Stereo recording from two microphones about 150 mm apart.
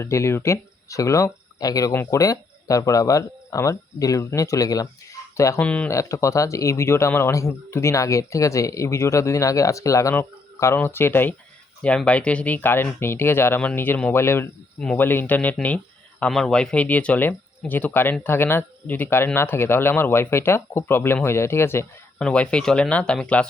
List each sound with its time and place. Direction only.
0.0 s speech: 20° left (ahead or behind)
5.6 s speech: 10° left (ahead or behind)
5.9 s speech: 20° left (ahead or behind)